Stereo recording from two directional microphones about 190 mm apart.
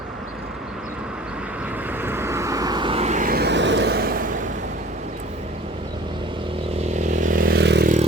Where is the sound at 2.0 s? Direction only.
10° right (ahead or behind); by 4.4 s 45° right (ahead or behind).